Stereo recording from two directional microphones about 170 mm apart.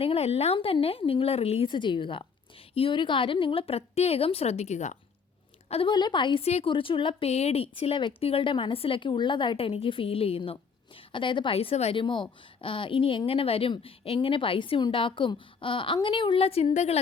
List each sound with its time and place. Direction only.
0.0 s a woman's voice: 35° left (ahead or behind)